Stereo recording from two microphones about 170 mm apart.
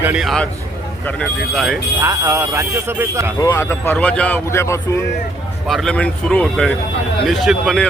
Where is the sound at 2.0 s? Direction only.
15° right (ahead or behind).